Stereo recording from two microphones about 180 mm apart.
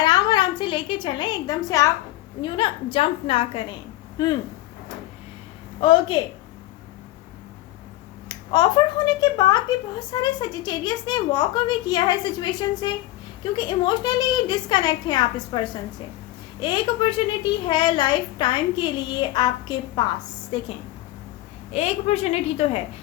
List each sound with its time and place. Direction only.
0.0 s a sound: 25° left (ahead or behind)
2.4 s a woman's voice: 30° left (ahead or behind)
5.8 s a woman's voice: 25° left (ahead or behind)
9.0 s a woman's voice: 20° left (ahead or behind)
21.7 s a woman's voice: 35° left (ahead or behind)